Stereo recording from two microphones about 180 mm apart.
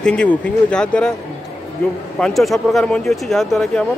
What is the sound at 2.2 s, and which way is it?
Speech, centre (ahead or behind).